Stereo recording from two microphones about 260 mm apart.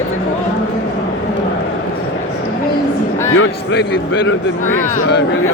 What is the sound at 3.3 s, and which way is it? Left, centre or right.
Speech, left.